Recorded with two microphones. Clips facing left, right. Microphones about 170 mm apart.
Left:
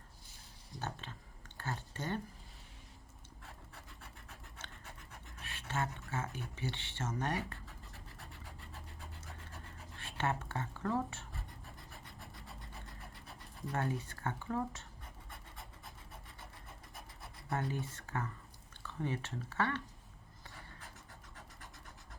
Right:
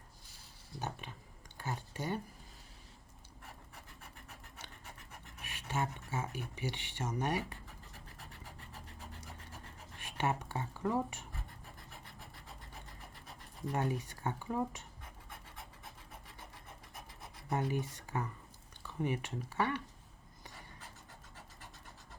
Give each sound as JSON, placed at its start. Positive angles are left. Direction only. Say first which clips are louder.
{"t": 0.8, "sound": "speech", "louder": "right 1 dB", "side_deg": -15}
{"t": 3.4, "sound": "a sound", "louder": "right 1 dB", "side_deg": -15}
{"t": 5.4, "sound": "speech", "louder": "right 1 dB", "side_deg": -15}
{"t": 9.2, "sound": "scratch", "louder": "right 1 dB", "side_deg": -15}
{"t": 11.9, "sound": "rub", "louder": "even", "side_deg": 0}
{"t": 13.6, "sound": "speech", "louder": "right 2 dB", "side_deg": -20}
{"t": 15.3, "sound": "scratch", "louder": "right 2 dB", "side_deg": 0}
{"t": 17.5, "sound": "speech", "louder": "right 3 dB", "side_deg": -20}